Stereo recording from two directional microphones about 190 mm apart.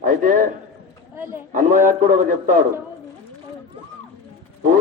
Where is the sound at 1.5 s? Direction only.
45° right (ahead or behind).